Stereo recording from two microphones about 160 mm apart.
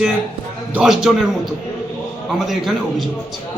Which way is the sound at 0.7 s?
5° right (ahead or behind).